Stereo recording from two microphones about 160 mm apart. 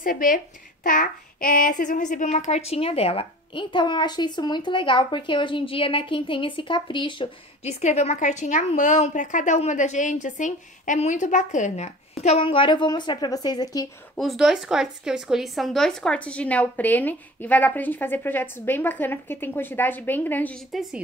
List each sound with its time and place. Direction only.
0.0 s a woman's voice: 60° left (ahead or behind); by 7.7 s 30° left (ahead or behind)
7.8 s a woman's voice: 45° left (ahead or behind); by 13.8 s 25° left (ahead or behind)
14.1 s a woman's voice: centre (ahead or behind)